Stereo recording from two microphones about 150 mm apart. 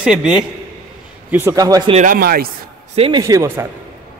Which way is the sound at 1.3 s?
20° right (ahead or behind).